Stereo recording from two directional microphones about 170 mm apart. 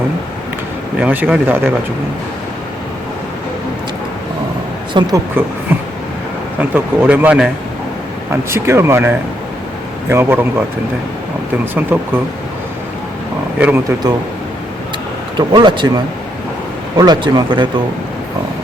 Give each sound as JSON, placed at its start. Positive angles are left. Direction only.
{"t": 0.9, "sound": "speech", "side_deg": -10}
{"t": 4.9, "sound": "speech", "side_deg": -20}
{"t": 6.6, "sound": "speech", "side_deg": -10}
{"t": 11.6, "sound": "speech", "side_deg": -10}
{"t": 13.6, "sound": "speech", "side_deg": -10}
{"t": 15.4, "sound": "speech", "side_deg": -25}
{"t": 17.0, "sound": "speech", "side_deg": -25}